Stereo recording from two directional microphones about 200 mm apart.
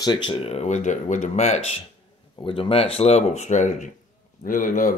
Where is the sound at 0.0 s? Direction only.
25° left (ahead or behind); by 4.9 s 45° left (ahead or behind).